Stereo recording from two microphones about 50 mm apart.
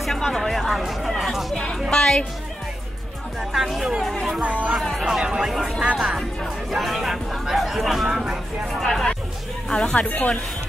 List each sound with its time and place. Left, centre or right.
0.0 s music: centre
1.5 s music: centre
3.5 s speech: centre
4.0 s music: centre
4.4 s speech: right
4.7 s a sound: centre
5.0 s a sound: centre
5.9 s speech: centre
6.7 s a sound: centre
8.7 s music: centre
9.7 s speech: centre
9.9 s speech: left